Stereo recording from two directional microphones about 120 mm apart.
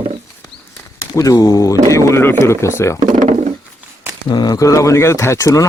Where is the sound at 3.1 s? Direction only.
75° right (ahead or behind).